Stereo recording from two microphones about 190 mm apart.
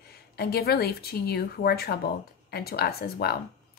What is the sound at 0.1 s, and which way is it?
A woman's voice, 55° left (ahead or behind).